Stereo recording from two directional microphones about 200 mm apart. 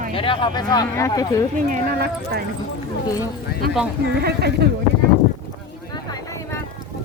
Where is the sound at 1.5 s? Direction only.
45° right (ahead or behind).